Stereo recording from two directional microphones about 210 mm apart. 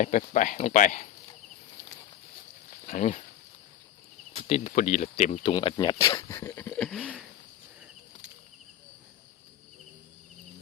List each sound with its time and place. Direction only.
0.0 s speech: 35° left (ahead or behind)
2.8 s speech: 35° left (ahead or behind)
4.4 s speech: 30° left (ahead or behind); by 7.1 s 5° left (ahead or behind)